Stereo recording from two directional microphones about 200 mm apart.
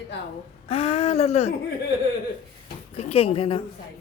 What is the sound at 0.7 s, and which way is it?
Speech, 30° left (ahead or behind).